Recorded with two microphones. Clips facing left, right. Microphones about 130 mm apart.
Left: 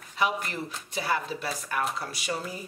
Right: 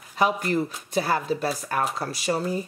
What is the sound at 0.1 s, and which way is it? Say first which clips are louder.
Speech: right 6 dB; 40° right (ahead or behind).